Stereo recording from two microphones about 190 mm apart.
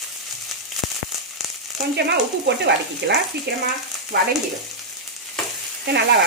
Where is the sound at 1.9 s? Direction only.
65° right (ahead or behind).